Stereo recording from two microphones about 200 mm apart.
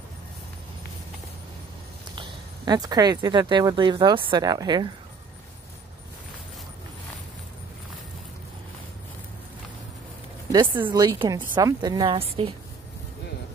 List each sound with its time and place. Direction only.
2.1 s speech: 20° right (ahead or behind)
10.9 s a woman's voice: 20° right (ahead or behind)